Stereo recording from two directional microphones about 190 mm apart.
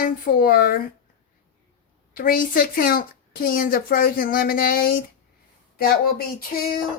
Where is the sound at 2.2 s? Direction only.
50° left (ahead or behind).